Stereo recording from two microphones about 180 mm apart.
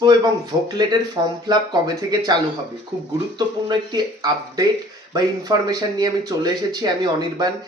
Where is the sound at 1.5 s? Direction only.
20° right (ahead or behind).